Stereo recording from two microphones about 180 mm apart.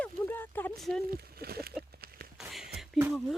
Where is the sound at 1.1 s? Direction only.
60° right (ahead or behind).